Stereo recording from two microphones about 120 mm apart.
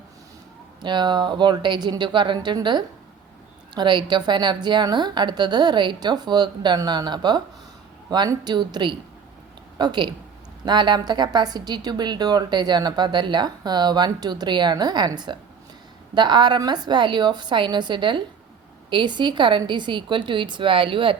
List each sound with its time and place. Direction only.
0.8 s a woman's voice: 40° right (ahead or behind)